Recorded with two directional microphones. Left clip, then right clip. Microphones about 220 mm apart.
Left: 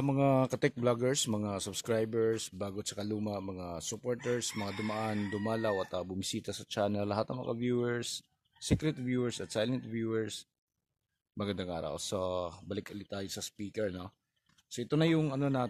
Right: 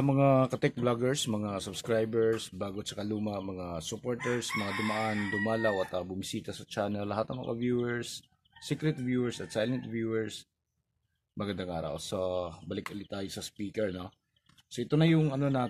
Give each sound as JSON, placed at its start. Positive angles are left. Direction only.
{"t": 0.0, "sound": "speech", "side_deg": 35}